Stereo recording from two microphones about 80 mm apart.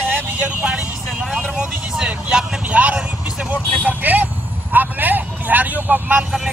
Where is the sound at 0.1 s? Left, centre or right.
Centre.